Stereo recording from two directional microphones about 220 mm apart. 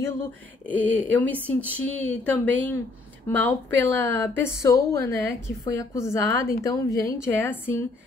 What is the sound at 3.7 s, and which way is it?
Speech, 55° right (ahead or behind).